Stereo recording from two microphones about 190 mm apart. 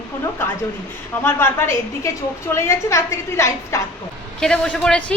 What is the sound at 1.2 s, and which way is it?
A woman's voice, 10° left (ahead or behind).